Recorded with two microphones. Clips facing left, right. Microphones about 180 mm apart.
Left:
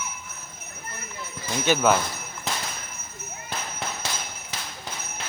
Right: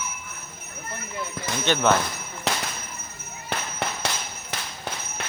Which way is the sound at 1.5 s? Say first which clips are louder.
Left 2 dB; 80° right.